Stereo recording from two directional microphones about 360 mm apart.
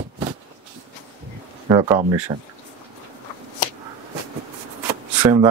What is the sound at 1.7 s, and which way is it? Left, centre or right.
Speech, centre.